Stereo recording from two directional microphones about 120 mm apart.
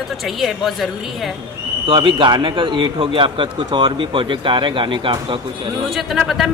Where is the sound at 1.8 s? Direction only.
45° right (ahead or behind).